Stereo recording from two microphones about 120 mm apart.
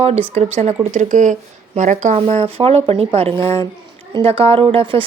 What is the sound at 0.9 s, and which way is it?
Speech, 90° right.